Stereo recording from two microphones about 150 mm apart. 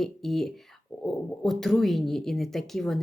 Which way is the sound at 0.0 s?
Centre (ahead or behind).